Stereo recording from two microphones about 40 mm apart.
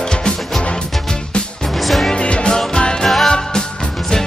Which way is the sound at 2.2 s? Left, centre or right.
Left.